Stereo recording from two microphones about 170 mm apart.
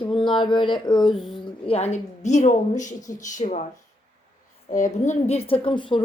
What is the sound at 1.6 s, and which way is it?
A woman's voice, 35° left (ahead or behind).